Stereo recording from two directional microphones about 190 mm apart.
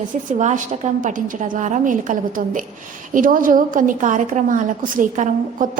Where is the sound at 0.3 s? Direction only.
40° right (ahead or behind).